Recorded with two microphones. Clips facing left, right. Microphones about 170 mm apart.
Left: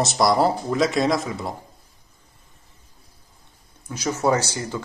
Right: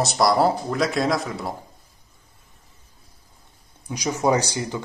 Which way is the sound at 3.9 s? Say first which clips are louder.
Even; 15° right (ahead or behind).